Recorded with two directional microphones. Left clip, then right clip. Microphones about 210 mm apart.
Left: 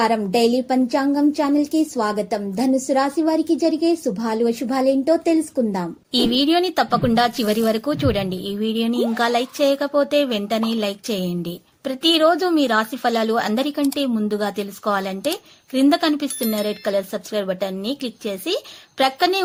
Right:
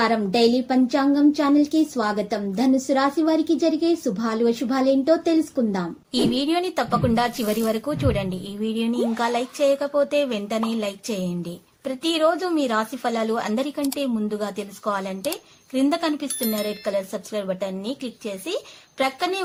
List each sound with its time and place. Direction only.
0.0 s a woman's voice: 25° left (ahead or behind)